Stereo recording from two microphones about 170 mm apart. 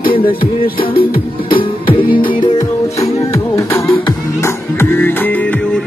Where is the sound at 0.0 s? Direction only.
60° left (ahead or behind).